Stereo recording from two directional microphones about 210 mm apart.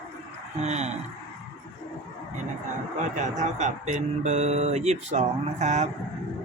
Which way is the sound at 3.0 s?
35° right (ahead or behind).